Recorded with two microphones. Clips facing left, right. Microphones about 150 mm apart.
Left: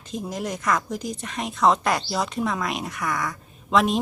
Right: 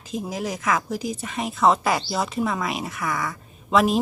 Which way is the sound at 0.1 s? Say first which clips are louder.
Right 1 dB; 5° right (ahead or behind).